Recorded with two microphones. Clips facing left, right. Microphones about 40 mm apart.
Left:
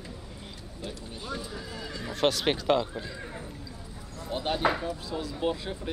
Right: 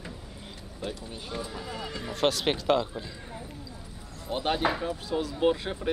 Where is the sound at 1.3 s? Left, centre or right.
Centre.